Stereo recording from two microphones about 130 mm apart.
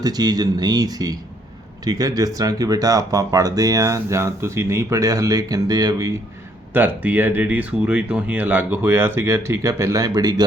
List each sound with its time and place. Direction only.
0.0 s speech: 30° right (ahead or behind)
6.7 s speech: 15° right (ahead or behind); by 10.4 s 30° right (ahead or behind)